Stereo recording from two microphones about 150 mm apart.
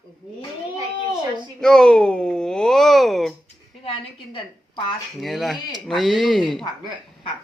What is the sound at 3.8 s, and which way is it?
A woman's voice, 35° left (ahead or behind).